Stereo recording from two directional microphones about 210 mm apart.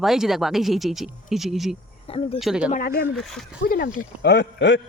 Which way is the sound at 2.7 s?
45° left (ahead or behind).